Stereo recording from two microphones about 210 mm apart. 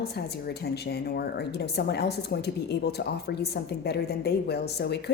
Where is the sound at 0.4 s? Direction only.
50° left (ahead or behind).